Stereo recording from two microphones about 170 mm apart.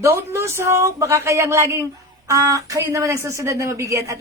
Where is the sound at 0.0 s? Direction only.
15° right (ahead or behind).